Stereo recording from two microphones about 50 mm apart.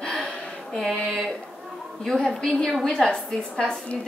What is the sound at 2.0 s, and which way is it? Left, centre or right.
A woman's voice, centre.